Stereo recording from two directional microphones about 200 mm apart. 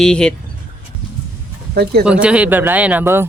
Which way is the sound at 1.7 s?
50° right (ahead or behind).